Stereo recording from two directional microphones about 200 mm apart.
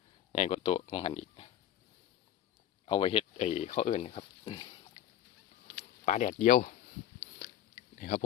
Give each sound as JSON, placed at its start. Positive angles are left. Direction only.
{"t": 0.3, "sound": "speech", "side_deg": 30}
{"t": 2.8, "sound": "speech", "side_deg": 25}
{"t": 6.1, "sound": "speech", "side_deg": 40}
{"t": 7.3, "sound": "a sound", "side_deg": 35}